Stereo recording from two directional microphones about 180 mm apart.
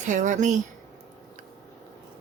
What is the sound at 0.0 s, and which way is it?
Speech, 45° right (ahead or behind).